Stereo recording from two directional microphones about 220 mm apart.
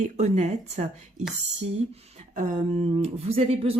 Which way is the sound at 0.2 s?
30° right (ahead or behind).